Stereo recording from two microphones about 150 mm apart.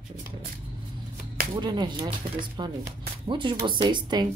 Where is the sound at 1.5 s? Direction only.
30° right (ahead or behind).